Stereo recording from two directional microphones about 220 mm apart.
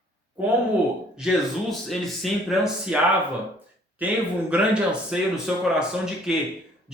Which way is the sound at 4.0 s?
5° right (ahead or behind).